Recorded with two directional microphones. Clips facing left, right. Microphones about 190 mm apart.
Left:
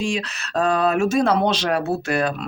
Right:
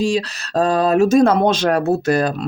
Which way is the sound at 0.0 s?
35° right (ahead or behind).